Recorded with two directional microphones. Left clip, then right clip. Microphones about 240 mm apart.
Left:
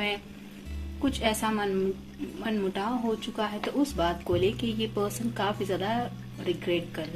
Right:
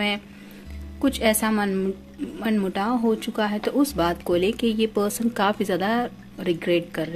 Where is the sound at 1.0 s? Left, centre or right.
Right.